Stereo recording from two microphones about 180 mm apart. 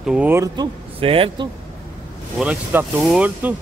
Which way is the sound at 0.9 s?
30° right (ahead or behind).